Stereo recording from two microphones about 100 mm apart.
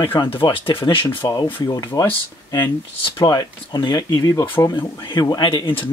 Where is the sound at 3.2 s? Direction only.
40° left (ahead or behind); by 5.9 s 60° left (ahead or behind).